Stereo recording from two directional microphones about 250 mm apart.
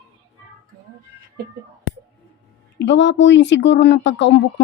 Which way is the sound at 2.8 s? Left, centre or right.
Left.